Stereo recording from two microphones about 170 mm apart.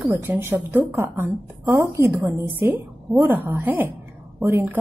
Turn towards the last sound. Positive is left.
turn(degrees=-10)  # may be behind; listen again after turning